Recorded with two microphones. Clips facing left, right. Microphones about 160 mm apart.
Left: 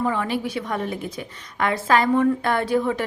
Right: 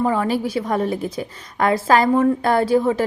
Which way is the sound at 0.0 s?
35° right (ahead or behind).